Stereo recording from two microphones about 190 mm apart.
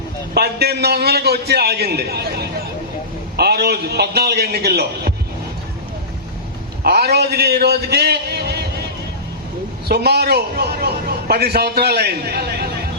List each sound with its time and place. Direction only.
0.3 s a man's voice: 55° right (ahead or behind)
6.8 s a man's voice: 55° right (ahead or behind)
9.9 s a man's voice: 55° right (ahead or behind)